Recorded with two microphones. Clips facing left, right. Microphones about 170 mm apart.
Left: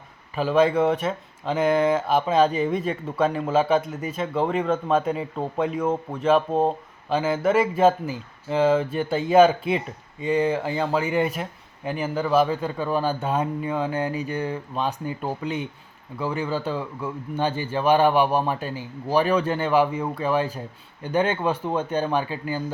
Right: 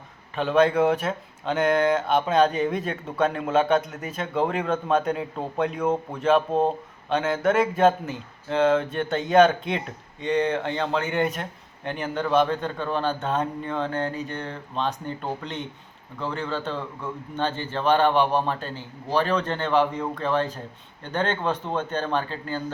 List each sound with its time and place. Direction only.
0.3 s a man's voice: 5° left (ahead or behind)